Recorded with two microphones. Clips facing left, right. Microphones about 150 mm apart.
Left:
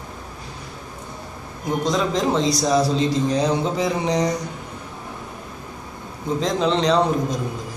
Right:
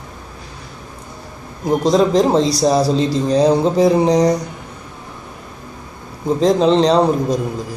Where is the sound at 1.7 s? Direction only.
35° right (ahead or behind).